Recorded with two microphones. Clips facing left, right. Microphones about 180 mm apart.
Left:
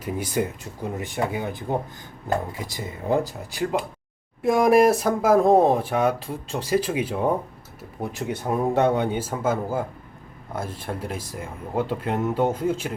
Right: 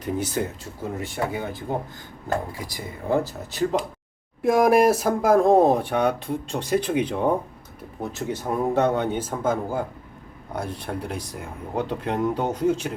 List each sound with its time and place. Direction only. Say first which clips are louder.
0.0 s speech: even; 10° left (ahead or behind)
4.4 s speech: even; centre (ahead or behind)